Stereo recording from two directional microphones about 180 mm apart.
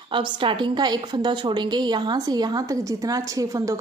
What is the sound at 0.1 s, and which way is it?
A woman's voice, 25° right (ahead or behind).